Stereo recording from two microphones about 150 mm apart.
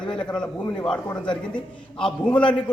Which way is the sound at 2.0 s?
5° left (ahead or behind).